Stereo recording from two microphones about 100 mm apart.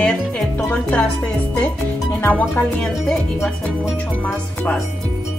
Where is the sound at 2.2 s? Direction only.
20° left (ahead or behind).